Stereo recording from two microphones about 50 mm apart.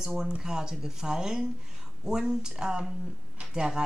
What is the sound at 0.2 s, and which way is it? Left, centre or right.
A woman's voice, centre.